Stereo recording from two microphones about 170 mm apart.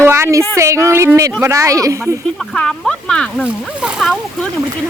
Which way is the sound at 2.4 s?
5° left (ahead or behind).